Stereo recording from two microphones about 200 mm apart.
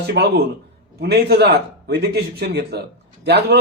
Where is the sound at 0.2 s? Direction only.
55° right (ahead or behind).